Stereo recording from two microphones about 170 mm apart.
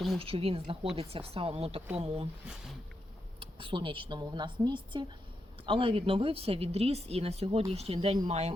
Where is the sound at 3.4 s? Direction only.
30° right (ahead or behind).